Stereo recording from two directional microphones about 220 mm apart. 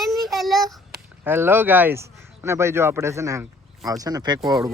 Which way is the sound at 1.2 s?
10° right (ahead or behind).